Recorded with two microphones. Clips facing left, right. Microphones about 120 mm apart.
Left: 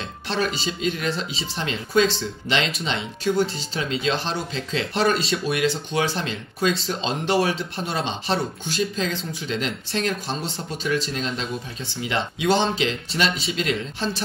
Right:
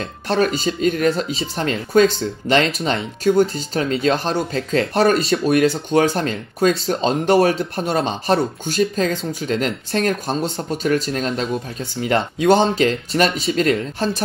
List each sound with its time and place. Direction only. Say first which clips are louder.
0.0 s speech: right 7 dB; 50° right (ahead or behind)